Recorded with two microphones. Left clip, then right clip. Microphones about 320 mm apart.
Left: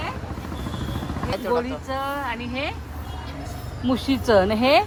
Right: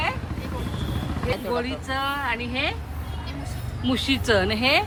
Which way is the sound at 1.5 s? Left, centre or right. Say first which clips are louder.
Left 1 dB; centre.